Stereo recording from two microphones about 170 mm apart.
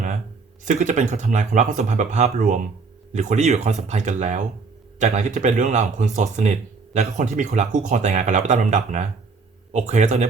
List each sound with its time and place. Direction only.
0.6 s speech: 45° right (ahead or behind)